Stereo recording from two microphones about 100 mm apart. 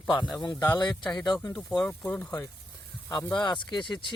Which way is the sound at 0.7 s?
50° left (ahead or behind).